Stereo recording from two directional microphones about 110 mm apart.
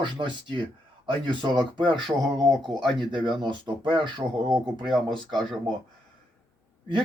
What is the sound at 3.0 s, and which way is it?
Speech, 45° right (ahead or behind).